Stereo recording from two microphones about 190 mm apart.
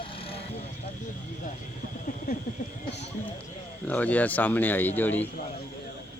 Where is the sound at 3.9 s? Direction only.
10° left (ahead or behind).